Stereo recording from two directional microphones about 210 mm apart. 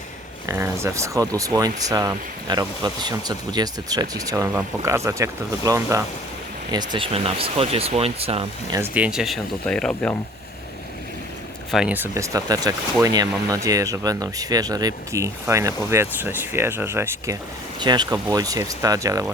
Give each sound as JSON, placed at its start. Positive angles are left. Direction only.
{"t": 0.4, "sound": "speech", "side_deg": -15}
{"t": 8.7, "sound": "speech", "side_deg": -10}
{"t": 11.7, "sound": "speech", "side_deg": -5}